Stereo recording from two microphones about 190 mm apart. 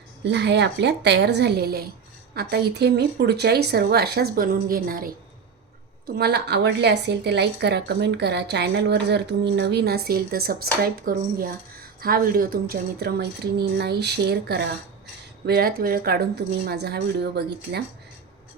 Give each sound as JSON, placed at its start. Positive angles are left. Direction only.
{"t": 0.3, "sound": "speech", "side_deg": -65}
{"t": 6.1, "sound": "speech", "side_deg": -60}